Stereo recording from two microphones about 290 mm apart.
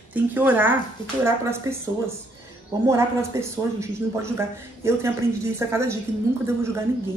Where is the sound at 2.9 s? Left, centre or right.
Centre.